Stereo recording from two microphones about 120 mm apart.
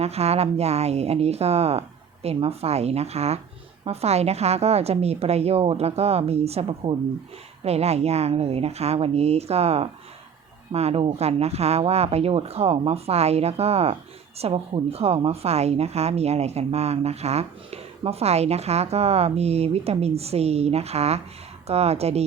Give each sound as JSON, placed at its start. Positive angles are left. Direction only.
{"t": 0.0, "sound": "a woman's voice", "side_deg": -60}